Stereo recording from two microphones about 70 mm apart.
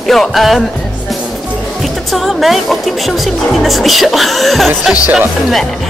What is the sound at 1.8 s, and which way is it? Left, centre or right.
Speech, centre.